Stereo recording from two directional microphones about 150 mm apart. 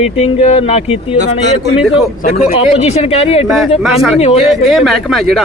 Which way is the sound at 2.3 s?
45° left (ahead or behind).